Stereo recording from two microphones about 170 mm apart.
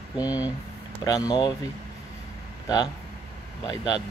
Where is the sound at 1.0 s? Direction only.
20° left (ahead or behind).